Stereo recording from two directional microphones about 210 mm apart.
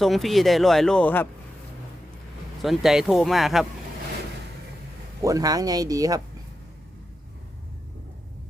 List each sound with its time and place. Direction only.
0.0 s speech: centre (ahead or behind)
2.6 s speech: centre (ahead or behind)
5.2 s speech: 15° right (ahead or behind)